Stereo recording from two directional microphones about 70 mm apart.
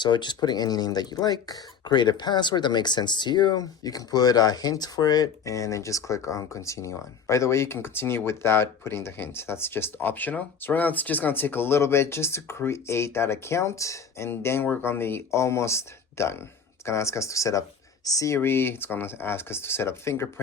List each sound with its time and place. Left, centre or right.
0.0 s speech: left
5.5 s speech: left
14.3 s speech: left
18.3 s speech: left